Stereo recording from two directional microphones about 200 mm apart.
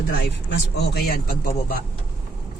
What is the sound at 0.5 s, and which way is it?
Speech, 50° left (ahead or behind).